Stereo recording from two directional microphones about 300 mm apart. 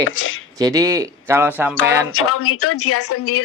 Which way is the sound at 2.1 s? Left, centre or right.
Left.